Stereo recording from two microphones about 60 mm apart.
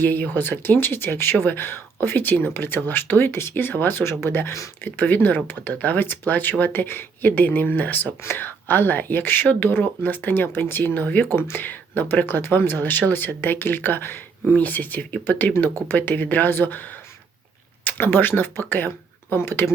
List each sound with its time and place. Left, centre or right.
0.0 s speech: left